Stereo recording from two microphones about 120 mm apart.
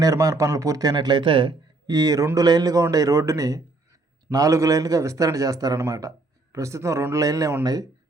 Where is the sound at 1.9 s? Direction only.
30° right (ahead or behind).